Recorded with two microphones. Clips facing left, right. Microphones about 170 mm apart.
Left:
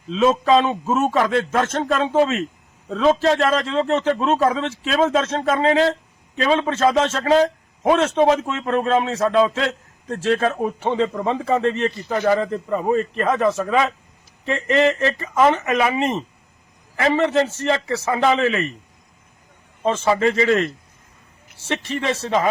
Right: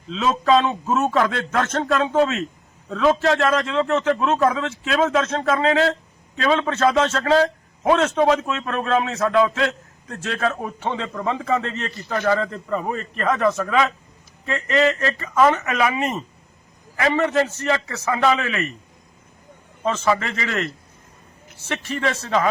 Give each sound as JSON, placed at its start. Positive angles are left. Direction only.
{"t": 0.1, "sound": "a man's voice", "side_deg": 25}
{"t": 8.0, "sound": "a man's voice", "side_deg": 25}
{"t": 19.8, "sound": "a man's voice", "side_deg": 25}
{"t": 22.0, "sound": "a man's voice", "side_deg": 25}